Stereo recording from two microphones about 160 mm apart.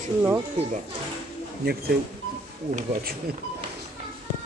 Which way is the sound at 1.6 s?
75° right (ahead or behind).